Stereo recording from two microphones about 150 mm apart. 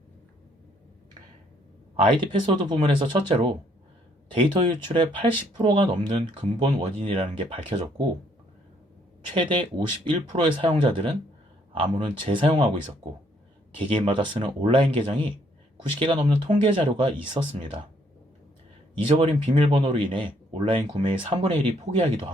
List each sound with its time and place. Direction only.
2.0 s speech: 35° right (ahead or behind)
9.3 s speech: 35° right (ahead or behind)
13.7 s speech: 35° right (ahead or behind)
16.5 s speech: 35° right (ahead or behind)
18.9 s speech: 40° right (ahead or behind)
19.9 s speech: 35° right (ahead or behind)